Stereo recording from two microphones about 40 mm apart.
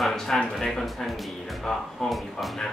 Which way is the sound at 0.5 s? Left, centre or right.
Centre.